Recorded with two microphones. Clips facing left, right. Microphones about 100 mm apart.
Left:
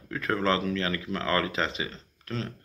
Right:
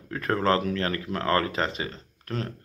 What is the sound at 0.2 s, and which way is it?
Speech, 50° right (ahead or behind).